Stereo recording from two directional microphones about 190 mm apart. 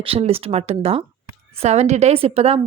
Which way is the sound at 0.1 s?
30° right (ahead or behind).